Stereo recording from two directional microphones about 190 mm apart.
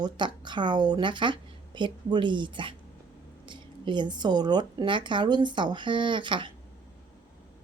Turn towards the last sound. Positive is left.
turn(degrees=-25)  # may be behind; listen again after turning